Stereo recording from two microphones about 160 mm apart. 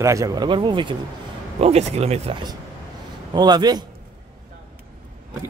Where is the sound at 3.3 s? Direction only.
25° right (ahead or behind).